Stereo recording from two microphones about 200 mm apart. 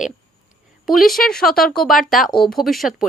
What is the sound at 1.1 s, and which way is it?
A woman's voice, centre (ahead or behind).